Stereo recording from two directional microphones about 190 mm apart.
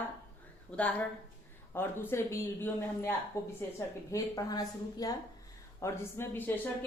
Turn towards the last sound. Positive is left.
turn(degrees=10)  # may be behind; listen again after turning